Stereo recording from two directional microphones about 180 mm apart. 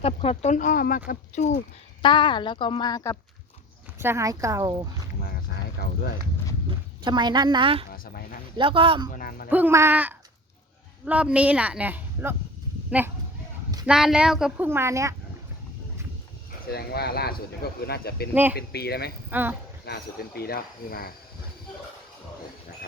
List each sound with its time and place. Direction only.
0.0 s speech: 35° left (ahead or behind)
2.0 s a woman's voice: 25° left (ahead or behind)
3.9 s speech: 15° right (ahead or behind)
5.2 s a sound: 60° left (ahead or behind)
6.7 s speech: 25° right (ahead or behind)
7.9 s speech: 55° left (ahead or behind)
8.5 s speech: 30° right (ahead or behind)
9.1 s speech: 55° left (ahead or behind)
9.5 s speech: 10° right (ahead or behind)
14.7 s speech: 15° right (ahead or behind)
16.6 s speech: 60° left (ahead or behind)
19.3 s speech: 10° right (ahead or behind)
19.8 s speech: 60° left (ahead or behind)